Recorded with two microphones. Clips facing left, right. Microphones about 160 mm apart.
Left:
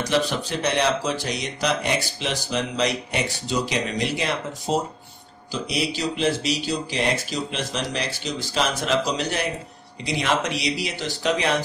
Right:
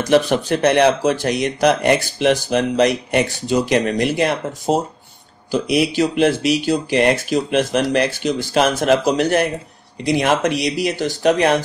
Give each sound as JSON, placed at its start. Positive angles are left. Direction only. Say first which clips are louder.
{"t": 0.0, "sound": "speech", "louder": "right 8 dB", "side_deg": -50}